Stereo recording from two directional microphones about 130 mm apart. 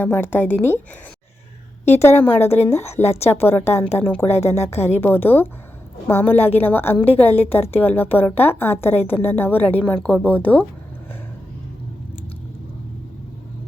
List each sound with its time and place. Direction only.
0.0 s a woman's voice: 15° left (ahead or behind)
2.0 s a woman's voice: 20° left (ahead or behind)